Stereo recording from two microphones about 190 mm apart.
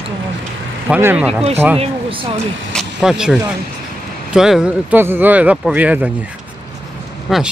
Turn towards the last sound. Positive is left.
turn(degrees=0)  # may be behind; listen again after turning